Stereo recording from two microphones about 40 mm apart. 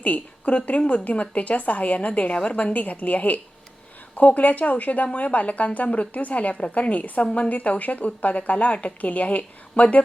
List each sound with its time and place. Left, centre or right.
0.0 s a woman's voice: left